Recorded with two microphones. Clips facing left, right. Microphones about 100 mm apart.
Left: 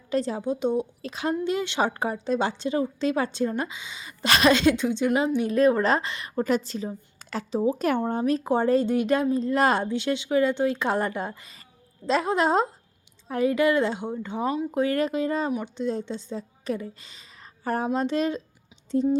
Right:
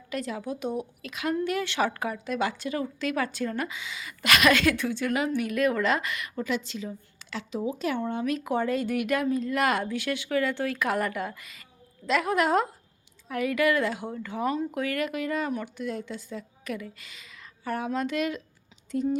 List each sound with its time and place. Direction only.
0.1 s a woman's voice: 30° left (ahead or behind)
7.8 s a woman's voice: 50° left (ahead or behind); by 19.1 s 30° left (ahead or behind)